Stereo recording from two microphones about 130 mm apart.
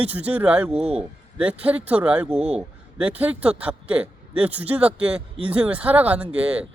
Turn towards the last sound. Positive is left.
turn(degrees=-10)  # may be behind; listen again after turning